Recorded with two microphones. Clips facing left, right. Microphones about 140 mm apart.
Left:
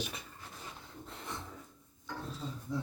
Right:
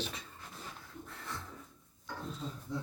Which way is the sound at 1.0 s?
20° left (ahead or behind).